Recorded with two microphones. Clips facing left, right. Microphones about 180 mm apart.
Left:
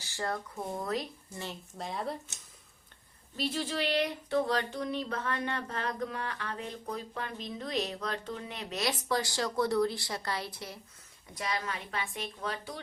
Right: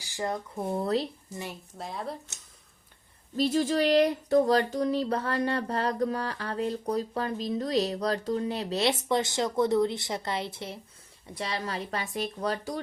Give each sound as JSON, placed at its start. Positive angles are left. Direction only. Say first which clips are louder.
{"t": 0.0, "sound": "speech", "louder": "right 3 dB", "side_deg": -15}
{"t": 0.8, "sound": "speech", "louder": "right 7 dB", "side_deg": -30}
{"t": 1.8, "sound": "speech", "louder": "even", "side_deg": 0}
{"t": 3.3, "sound": "speech", "louder": "right 8 dB", "side_deg": -45}